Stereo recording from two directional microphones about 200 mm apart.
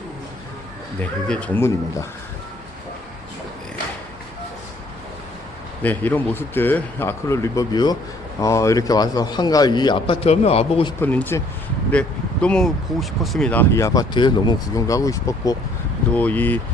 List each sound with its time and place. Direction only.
1.3 s speech: 10° left (ahead or behind)
5.8 s a man's voice: 10° left (ahead or behind); by 10.9 s 30° left (ahead or behind)
11.0 s speech: 10° left (ahead or behind)